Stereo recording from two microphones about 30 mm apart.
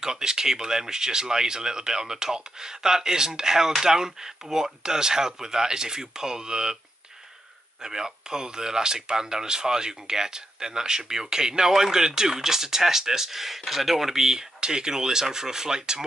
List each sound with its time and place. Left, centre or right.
0.0 s speech: right
7.8 s speech: centre